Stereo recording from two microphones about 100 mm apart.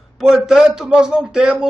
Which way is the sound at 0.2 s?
5° right (ahead or behind).